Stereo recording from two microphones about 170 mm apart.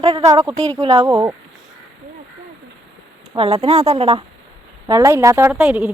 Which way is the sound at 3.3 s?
35° right (ahead or behind).